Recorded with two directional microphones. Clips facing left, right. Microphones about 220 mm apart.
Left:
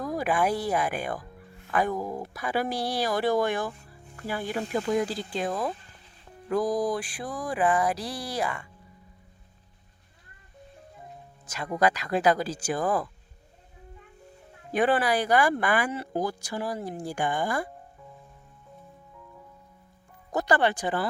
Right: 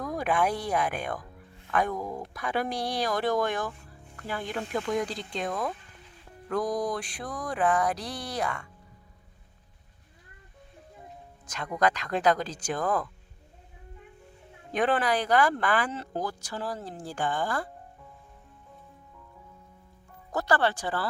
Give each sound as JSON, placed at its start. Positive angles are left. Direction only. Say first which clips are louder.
{"t": 0.0, "sound": "mantra", "louder": "left 1 dB", "side_deg": 5}
{"t": 1.7, "sound": "speech", "louder": "left 2 dB", "side_deg": 5}
{"t": 5.3, "sound": "mantra", "louder": "left 2 dB", "side_deg": 5}
{"t": 11.4, "sound": "speech", "louder": "left 2 dB", "side_deg": 5}
{"t": 14.7, "sound": "speech", "louder": "left 2 dB", "side_deg": 5}
{"t": 20.3, "sound": "speech", "louder": "left 2 dB", "side_deg": 15}